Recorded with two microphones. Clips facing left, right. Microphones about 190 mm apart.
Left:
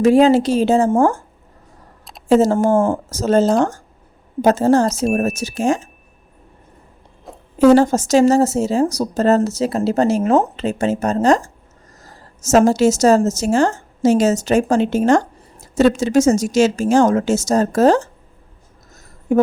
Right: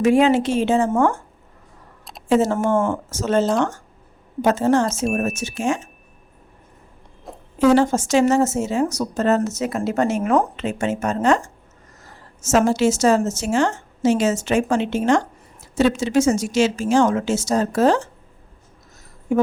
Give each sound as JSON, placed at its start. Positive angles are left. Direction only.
{"t": 0.0, "sound": "a woman's voice", "side_deg": 35}
{"t": 2.3, "sound": "a woman's voice", "side_deg": 40}
{"t": 7.3, "sound": "a sound", "side_deg": 0}
{"t": 7.7, "sound": "a woman's voice", "side_deg": 40}
{"t": 19.3, "sound": "speech", "side_deg": 45}